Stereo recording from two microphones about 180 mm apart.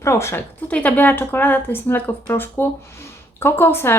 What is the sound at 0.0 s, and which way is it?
A woman's voice, 15° left (ahead or behind).